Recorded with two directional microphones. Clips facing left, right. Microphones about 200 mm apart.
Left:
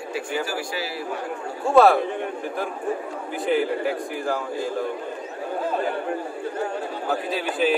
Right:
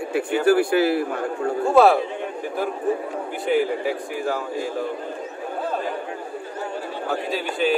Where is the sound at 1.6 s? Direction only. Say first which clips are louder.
Even; centre (ahead or behind).